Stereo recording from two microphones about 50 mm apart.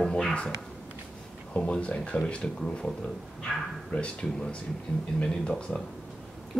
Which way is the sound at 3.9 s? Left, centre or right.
Left.